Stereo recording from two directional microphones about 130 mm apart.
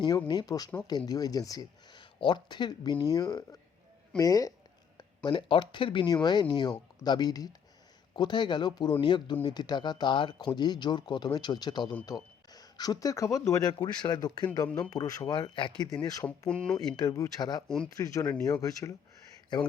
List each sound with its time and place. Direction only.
0.3 s speech: 30° left (ahead or behind)
16.5 s speech: 5° left (ahead or behind)
16.7 s speech: 30° left (ahead or behind)